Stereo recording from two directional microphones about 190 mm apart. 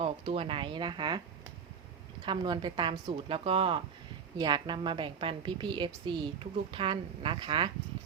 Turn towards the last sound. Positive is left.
turn(degrees=-25)  # may be behind; listen again after turning